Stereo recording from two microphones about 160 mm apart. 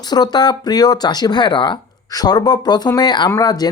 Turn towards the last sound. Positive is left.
turn(degrees=25)  # may be behind; listen again after turning